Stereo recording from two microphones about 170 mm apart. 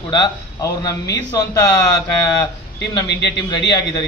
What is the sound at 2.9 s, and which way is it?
Speech, 20° left (ahead or behind).